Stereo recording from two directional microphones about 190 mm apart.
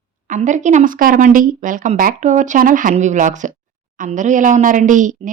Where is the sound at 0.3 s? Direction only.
40° right (ahead or behind).